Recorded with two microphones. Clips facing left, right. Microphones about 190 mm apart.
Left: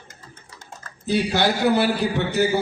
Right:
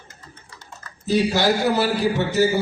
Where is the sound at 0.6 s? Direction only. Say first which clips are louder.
Even; 55° left (ahead or behind).